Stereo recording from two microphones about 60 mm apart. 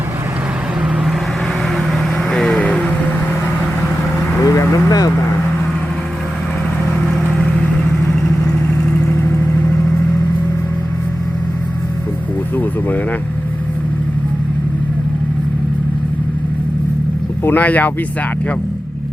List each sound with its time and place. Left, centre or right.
2.3 s vehicle: centre
4.4 s vehicle: left
9.1 s vehicle: left
17.4 s speech: left